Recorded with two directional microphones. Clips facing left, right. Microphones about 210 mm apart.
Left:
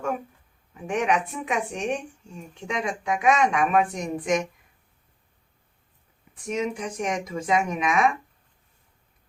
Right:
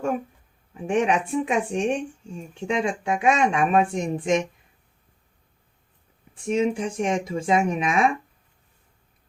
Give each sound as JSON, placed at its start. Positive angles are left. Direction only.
{"t": 0.7, "sound": "speech", "side_deg": -30}
{"t": 6.3, "sound": "speech", "side_deg": -30}